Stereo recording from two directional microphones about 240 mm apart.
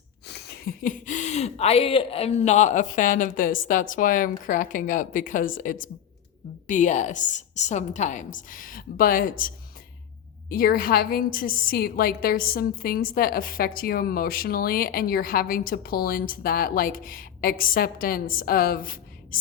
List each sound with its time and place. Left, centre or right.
0.3 s a woman's voice: left
10.5 s a woman's voice: left